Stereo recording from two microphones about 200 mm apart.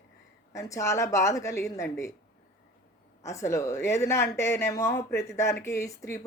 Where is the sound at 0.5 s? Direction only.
15° left (ahead or behind).